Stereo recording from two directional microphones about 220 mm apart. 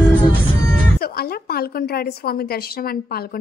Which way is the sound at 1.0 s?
45° left (ahead or behind).